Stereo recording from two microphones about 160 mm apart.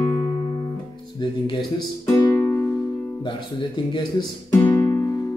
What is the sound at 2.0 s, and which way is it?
Music, 15° left (ahead or behind).